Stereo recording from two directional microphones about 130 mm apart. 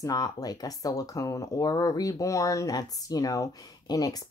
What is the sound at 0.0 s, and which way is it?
Speech, 25° left (ahead or behind).